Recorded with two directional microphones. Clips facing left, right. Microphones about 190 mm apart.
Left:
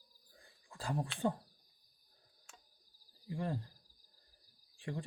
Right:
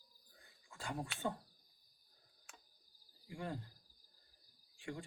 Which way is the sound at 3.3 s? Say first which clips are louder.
Left 6 dB; 35° left (ahead or behind).